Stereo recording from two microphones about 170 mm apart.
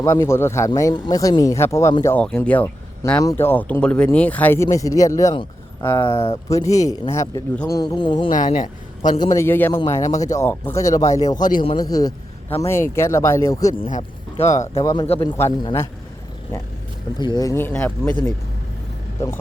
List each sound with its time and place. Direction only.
0.0 s speech: 15° left (ahead or behind)
2.1 s speech: 10° left (ahead or behind)
6.1 s speech: 35° left (ahead or behind)
6.5 s speech: 20° left (ahead or behind)
8.3 s speech: 50° left (ahead or behind)
9.1 s a man's voice: 20° left (ahead or behind)
13.9 s speech: 45° left (ahead or behind)
14.8 s speech: 20° left (ahead or behind)
17.2 s speech: 25° left (ahead or behind)